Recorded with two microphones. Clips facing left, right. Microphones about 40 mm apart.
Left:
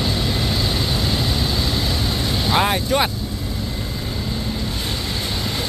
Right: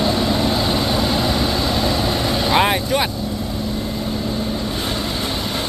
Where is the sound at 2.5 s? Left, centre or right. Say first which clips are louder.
Right 2 dB; centre.